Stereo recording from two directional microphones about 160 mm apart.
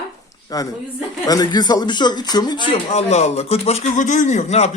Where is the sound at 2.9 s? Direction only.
45° left (ahead or behind).